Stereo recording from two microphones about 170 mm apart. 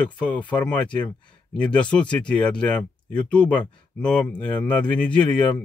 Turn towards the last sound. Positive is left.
turn(degrees=10)  # may be behind; listen again after turning